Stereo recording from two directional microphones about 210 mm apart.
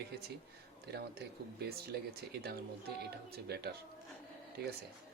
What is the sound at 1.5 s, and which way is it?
Speech, 50° right (ahead or behind).